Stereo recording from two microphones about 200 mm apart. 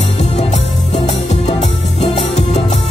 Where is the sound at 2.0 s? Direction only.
30° left (ahead or behind).